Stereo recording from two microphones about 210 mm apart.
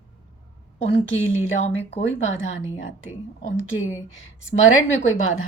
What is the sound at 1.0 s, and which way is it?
A woman's voice, 70° left (ahead or behind).